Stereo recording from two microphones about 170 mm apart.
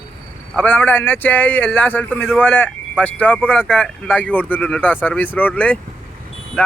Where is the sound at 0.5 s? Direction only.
10° left (ahead or behind).